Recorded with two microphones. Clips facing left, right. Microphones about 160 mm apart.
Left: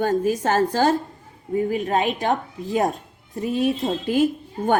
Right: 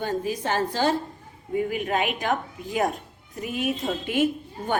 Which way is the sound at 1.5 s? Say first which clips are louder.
Left 4 dB; 35° left (ahead or behind).